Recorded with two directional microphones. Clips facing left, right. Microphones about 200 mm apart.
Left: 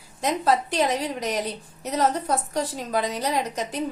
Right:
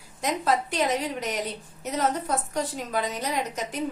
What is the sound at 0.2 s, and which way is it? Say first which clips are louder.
Speech: left 3 dB; 30° left (ahead or behind).